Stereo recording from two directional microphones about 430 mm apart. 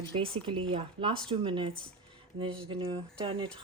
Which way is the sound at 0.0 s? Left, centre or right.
Centre.